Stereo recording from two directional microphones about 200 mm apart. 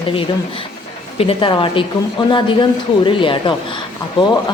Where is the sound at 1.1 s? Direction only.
25° left (ahead or behind).